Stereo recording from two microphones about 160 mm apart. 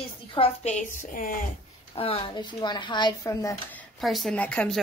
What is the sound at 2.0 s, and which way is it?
Speech, 35° left (ahead or behind).